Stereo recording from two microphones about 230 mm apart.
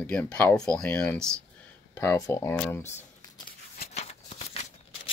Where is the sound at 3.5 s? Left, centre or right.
Left.